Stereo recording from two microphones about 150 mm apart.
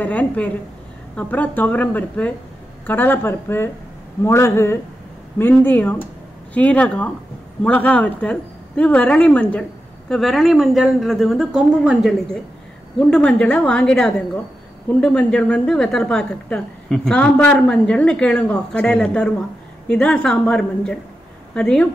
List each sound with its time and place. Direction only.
0.0 s a woman's voice: 10° left (ahead or behind)